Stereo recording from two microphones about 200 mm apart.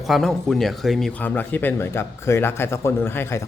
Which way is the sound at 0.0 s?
Centre (ahead or behind).